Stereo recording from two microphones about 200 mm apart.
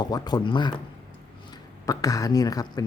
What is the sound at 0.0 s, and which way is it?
Speech, 20° left (ahead or behind).